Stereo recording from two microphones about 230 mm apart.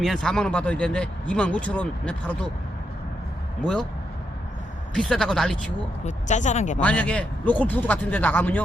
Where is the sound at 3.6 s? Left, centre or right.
Centre.